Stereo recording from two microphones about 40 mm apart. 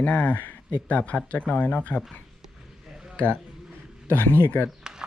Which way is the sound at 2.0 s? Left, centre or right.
Centre.